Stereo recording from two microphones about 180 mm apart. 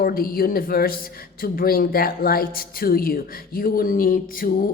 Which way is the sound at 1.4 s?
55° left (ahead or behind).